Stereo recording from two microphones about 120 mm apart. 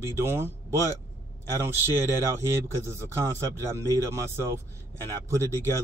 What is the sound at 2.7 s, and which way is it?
Speech, 25° right (ahead or behind).